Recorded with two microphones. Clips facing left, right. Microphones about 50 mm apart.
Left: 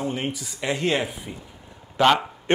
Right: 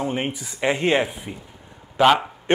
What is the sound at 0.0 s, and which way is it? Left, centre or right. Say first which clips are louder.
Speech: right 2 dB; right.